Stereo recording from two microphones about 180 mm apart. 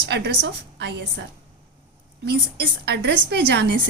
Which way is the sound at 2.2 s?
65° right (ahead or behind).